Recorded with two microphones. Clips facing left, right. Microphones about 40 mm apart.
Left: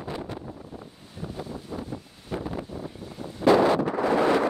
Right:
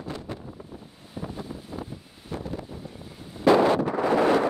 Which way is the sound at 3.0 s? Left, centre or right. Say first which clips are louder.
Left 4 dB; centre.